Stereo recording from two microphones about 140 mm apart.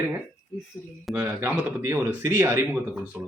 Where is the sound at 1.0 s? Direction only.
10° right (ahead or behind).